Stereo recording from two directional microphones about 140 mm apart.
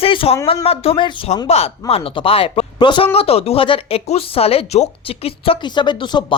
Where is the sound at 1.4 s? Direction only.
45° left (ahead or behind).